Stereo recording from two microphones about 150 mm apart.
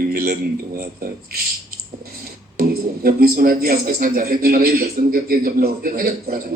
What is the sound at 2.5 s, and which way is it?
Speech, 90° right.